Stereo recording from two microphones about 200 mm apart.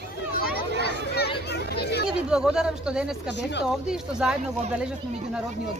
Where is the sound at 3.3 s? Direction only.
60° left (ahead or behind).